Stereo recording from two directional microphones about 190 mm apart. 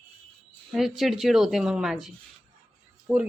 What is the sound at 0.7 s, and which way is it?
Speech, centre (ahead or behind).